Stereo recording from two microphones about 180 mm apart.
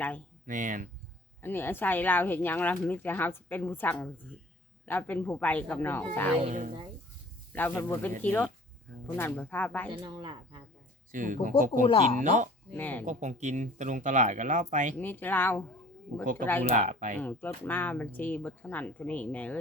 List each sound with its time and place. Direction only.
0.4 s speech: 45° right (ahead or behind)
1.4 s speech: 10° left (ahead or behind)
6.4 s speech: 45° right (ahead or behind)
7.5 s speech: 10° left (ahead or behind)
9.9 s speech: 30° right (ahead or behind)
11.1 s speech: 45° right (ahead or behind)
12.7 s speech: 10° left (ahead or behind)
13.1 s speech: 40° right (ahead or behind)
14.9 s speech: 10° left (ahead or behind)
16.2 s speech: 45° right (ahead or behind)
17.2 s speech: 10° left (ahead or behind)